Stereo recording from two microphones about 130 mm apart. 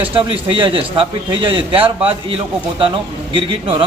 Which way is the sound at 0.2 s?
40° right (ahead or behind).